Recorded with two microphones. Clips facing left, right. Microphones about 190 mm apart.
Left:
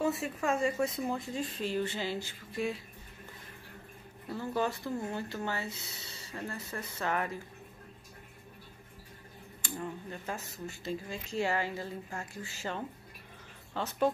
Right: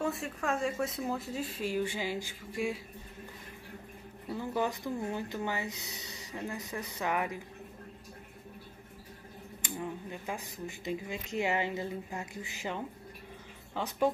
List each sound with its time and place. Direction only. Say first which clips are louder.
0.0 s speech: left 2 dB; centre (ahead or behind)
4.3 s speech: even; 15° right (ahead or behind)
9.6 s speech: right 1 dB; 15° right (ahead or behind)